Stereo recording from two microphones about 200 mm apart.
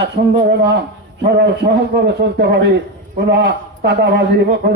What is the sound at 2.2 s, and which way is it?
Speech, 60° right (ahead or behind).